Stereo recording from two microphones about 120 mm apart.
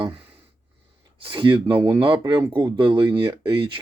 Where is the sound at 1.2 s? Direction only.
45° right (ahead or behind).